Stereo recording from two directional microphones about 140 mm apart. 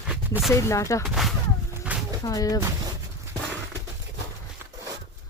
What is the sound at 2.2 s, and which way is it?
Speech, 25° left (ahead or behind).